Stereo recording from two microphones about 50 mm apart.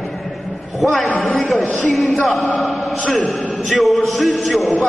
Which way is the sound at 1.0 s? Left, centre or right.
Left.